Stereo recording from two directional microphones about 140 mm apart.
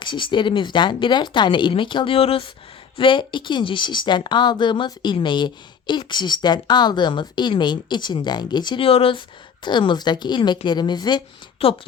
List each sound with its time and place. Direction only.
0.0 s a woman's voice: 35° left (ahead or behind)
11.6 s a woman's voice: 45° left (ahead or behind)